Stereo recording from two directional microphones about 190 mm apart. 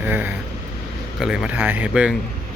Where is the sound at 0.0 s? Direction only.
10° right (ahead or behind).